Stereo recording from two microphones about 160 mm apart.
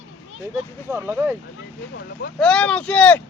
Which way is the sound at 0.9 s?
15° right (ahead or behind).